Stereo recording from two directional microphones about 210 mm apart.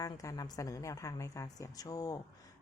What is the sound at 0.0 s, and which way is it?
A woman's voice, 15° left (ahead or behind).